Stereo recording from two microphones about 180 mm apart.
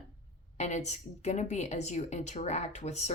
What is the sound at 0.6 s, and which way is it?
Speech, 40° left (ahead or behind).